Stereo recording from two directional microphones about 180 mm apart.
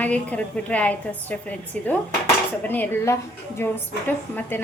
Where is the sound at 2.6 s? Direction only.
10° left (ahead or behind).